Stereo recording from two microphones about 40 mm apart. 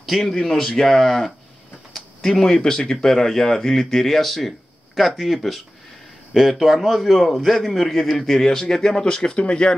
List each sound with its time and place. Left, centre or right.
0.0 s a man's voice: centre
2.0 s a sound: centre
2.4 s a man's voice: centre